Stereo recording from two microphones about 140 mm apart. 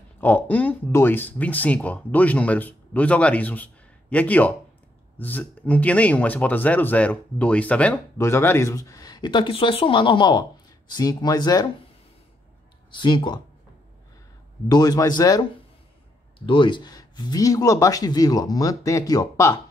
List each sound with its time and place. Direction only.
0.2 s speech: 15° left (ahead or behind)
12.9 s speech: 35° left (ahead or behind)
14.7 s speech: 30° left (ahead or behind)